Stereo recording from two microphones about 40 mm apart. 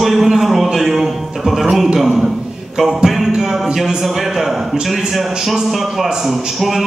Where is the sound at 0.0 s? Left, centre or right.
Centre.